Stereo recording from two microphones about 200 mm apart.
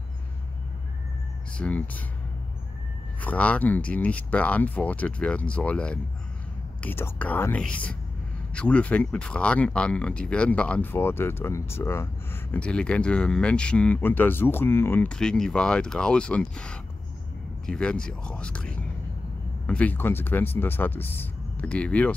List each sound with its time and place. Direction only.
1.6 s speech: 5° left (ahead or behind)
3.2 s speech: 5° left (ahead or behind)